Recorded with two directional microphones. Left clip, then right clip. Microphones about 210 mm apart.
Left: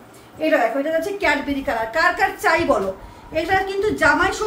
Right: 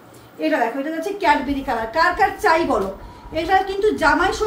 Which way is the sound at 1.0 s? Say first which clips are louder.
Right 2 dB; 20° left (ahead or behind).